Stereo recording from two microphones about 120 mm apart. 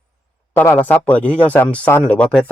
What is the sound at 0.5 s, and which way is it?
Speech, 15° left (ahead or behind).